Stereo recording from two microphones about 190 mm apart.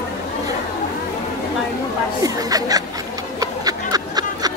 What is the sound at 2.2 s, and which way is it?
Speech, 20° right (ahead or behind).